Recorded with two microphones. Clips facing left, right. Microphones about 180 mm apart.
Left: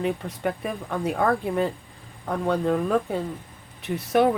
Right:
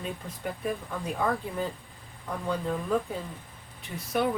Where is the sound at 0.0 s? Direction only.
75° left (ahead or behind).